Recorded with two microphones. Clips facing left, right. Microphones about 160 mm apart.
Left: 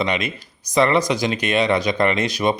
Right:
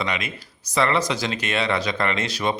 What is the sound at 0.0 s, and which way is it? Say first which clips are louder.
Speech: left 5 dB; 20° left (ahead or behind).